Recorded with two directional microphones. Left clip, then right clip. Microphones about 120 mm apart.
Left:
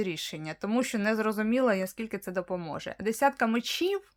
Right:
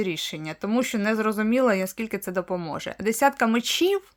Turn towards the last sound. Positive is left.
turn(degrees=-5)  # may be behind; listen again after turning